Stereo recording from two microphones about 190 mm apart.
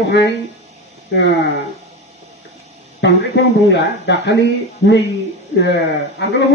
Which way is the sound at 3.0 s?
60° left (ahead or behind).